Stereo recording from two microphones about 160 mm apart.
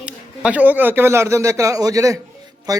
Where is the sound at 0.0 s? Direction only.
10° right (ahead or behind).